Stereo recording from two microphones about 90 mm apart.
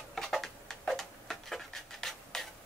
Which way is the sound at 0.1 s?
5° left (ahead or behind).